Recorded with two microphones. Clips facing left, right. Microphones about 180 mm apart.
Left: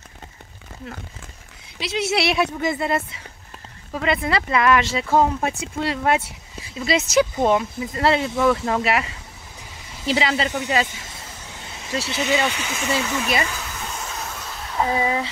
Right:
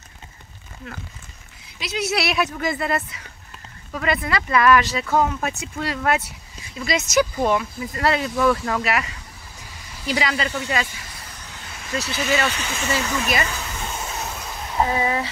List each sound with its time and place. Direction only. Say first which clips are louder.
1.8 s speech: left 2 dB; 25° left (ahead or behind)
10.0 s speech: left 2 dB; 25° left (ahead or behind)
12.6 s speech: left 1 dB; centre (ahead or behind)
13.5 s a sound: right 1 dB; 10° right (ahead or behind)